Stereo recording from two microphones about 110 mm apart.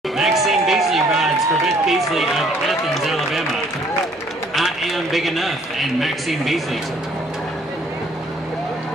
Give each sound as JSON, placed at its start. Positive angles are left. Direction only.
{"t": 0.2, "sound": "a sound", "side_deg": 0}
{"t": 1.9, "sound": "run", "side_deg": 0}
{"t": 4.6, "sound": "a man's voice", "side_deg": 0}